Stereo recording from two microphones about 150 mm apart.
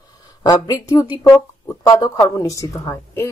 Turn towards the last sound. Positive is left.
turn(degrees=20)  # may be behind; listen again after turning